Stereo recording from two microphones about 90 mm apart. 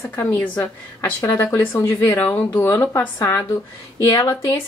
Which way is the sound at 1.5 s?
35° left (ahead or behind).